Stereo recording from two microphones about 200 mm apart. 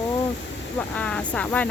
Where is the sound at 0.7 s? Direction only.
5° left (ahead or behind).